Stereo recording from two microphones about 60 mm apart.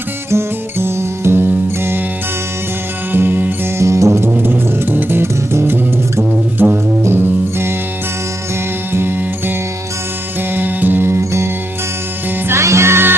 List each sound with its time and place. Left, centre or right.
0.3 s music: right
3.1 s music: right
3.8 s music: right
4.4 s music: right
8.9 s music: right
12.5 s music: right